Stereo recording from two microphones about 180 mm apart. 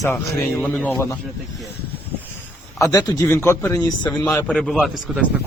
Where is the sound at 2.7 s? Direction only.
20° left (ahead or behind).